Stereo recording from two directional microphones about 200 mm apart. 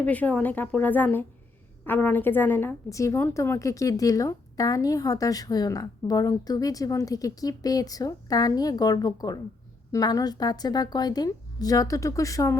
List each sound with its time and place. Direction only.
0.0 s a woman's voice: 5° left (ahead or behind)